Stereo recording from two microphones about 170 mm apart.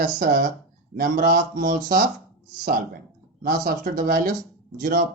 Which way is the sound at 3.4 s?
55° right (ahead or behind).